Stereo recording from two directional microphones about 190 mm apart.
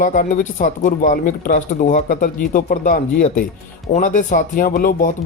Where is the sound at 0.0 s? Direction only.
45° left (ahead or behind).